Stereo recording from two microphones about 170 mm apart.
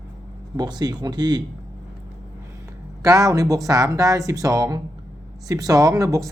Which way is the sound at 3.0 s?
20° right (ahead or behind).